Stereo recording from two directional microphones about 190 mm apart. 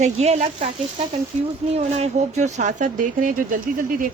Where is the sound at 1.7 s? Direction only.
35° right (ahead or behind).